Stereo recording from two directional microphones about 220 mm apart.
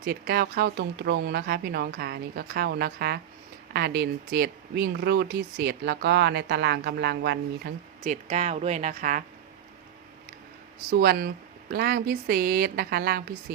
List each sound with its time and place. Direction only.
0.0 s speech: 45° right (ahead or behind)
8.0 s a woman's voice: 35° right (ahead or behind)
10.9 s speech: 45° right (ahead or behind)